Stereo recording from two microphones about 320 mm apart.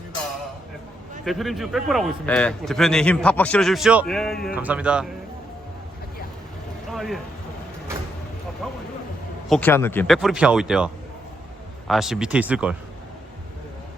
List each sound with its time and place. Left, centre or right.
1.2 s a man's voice: centre
6.9 s speech: centre
8.6 s a man's voice: centre